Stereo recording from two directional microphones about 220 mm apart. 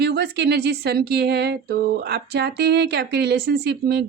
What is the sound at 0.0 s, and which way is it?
Speech, 50° right (ahead or behind).